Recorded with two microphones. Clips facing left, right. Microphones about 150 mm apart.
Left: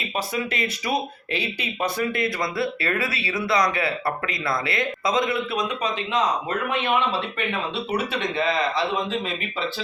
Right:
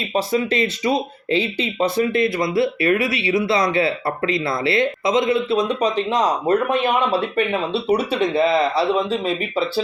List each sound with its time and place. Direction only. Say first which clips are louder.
0.1 s speech: right 8 dB; 30° right (ahead or behind)